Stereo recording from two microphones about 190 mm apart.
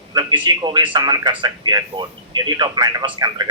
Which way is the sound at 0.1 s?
20° right (ahead or behind).